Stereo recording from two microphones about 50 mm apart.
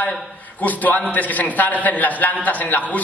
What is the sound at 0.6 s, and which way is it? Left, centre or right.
A man's voice, left.